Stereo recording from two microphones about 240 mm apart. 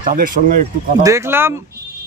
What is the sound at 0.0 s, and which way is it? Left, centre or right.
Speech, right.